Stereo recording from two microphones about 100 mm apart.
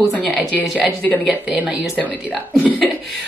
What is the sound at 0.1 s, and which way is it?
Speech, 15° left (ahead or behind).